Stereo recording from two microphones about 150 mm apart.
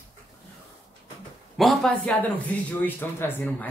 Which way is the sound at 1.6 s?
Centre (ahead or behind).